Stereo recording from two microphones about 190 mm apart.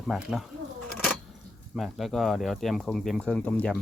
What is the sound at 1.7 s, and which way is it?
Speech, centre (ahead or behind).